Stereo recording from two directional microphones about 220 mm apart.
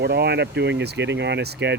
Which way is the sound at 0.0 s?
50° right (ahead or behind).